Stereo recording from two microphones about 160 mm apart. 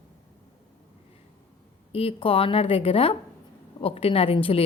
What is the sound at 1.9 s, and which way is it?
A woman's voice, 35° left (ahead or behind).